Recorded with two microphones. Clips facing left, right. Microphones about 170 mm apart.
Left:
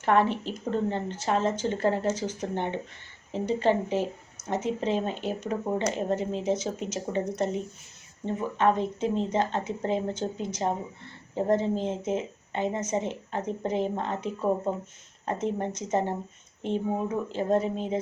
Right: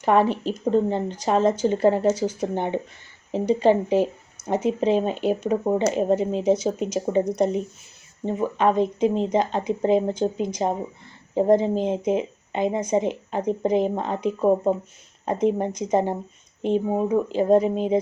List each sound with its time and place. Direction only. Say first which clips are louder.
0.0 s a woman's voice: right 4 dB; 15° right (ahead or behind)